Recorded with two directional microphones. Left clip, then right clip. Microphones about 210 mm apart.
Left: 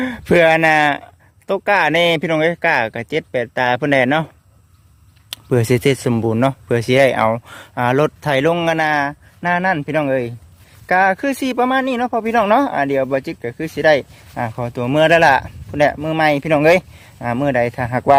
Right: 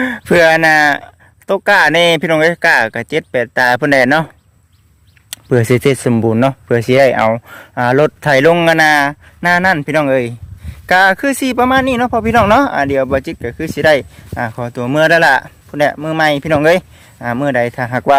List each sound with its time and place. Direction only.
0.0 s speech: 15° right (ahead or behind)
5.3 s speech: 15° right (ahead or behind)